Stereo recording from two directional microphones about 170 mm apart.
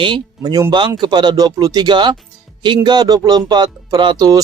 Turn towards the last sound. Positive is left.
turn(degrees=-20)  # may be behind; listen again after turning